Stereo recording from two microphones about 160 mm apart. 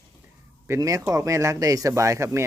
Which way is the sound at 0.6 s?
20° right (ahead or behind).